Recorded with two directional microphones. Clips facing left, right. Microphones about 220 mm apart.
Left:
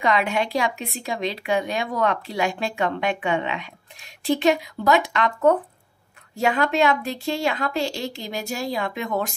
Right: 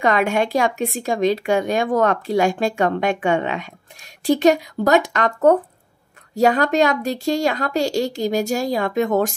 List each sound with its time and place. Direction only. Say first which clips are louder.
0.0 s speech: right 4 dB; 45° right (ahead or behind)